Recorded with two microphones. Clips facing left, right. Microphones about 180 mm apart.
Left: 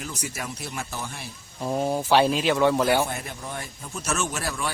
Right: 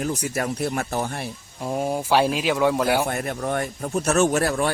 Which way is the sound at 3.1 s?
60° right (ahead or behind).